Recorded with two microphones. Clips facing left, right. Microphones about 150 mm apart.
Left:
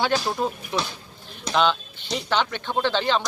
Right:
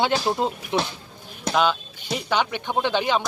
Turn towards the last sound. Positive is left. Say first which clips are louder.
# right 1 dB
turn(degrees=-15)  # may be behind; listen again after turning